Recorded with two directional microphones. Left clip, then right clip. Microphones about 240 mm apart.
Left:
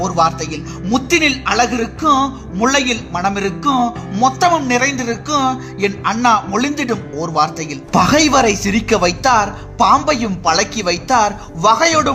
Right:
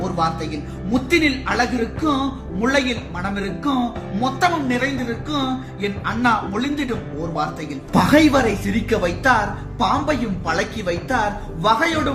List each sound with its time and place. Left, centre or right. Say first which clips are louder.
0.0 s speech: left 7 dB; left